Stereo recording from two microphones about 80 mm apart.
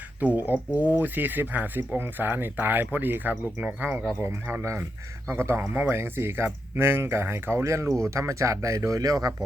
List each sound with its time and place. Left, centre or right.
0.3 s speech: right
4.2 s speech: right